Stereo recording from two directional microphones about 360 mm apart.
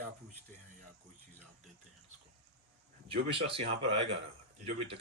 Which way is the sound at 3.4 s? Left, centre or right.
Centre.